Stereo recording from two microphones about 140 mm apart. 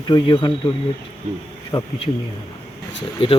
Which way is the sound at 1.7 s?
25° left (ahead or behind).